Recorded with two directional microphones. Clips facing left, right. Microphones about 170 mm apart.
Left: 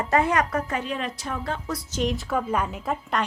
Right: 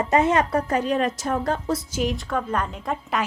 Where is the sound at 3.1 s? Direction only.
5° right (ahead or behind).